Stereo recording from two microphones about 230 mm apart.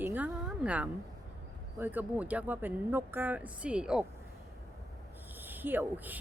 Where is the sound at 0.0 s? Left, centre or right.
Centre.